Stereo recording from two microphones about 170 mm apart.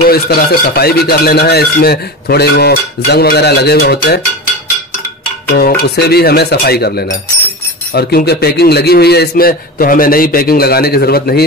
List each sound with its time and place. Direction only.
0.0 s speech: 65° left (ahead or behind)
5.5 s a man's voice: 70° left (ahead or behind)